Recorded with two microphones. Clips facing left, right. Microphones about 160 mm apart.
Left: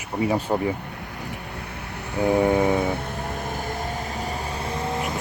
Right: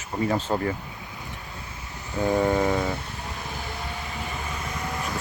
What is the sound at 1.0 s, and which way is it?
Vehicle, 65° left (ahead or behind).